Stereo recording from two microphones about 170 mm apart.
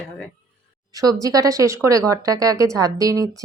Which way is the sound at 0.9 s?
20° right (ahead or behind).